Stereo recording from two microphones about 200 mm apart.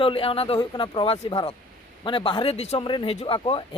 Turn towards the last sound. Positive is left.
turn(degrees=25)  # may be behind; listen again after turning